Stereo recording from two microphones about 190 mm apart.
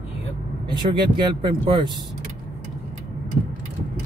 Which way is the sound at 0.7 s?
25° right (ahead or behind).